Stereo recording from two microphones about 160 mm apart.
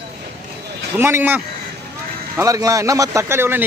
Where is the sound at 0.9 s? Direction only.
15° right (ahead or behind).